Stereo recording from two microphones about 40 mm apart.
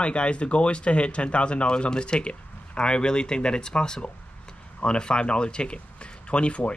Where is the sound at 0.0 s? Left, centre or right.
Left.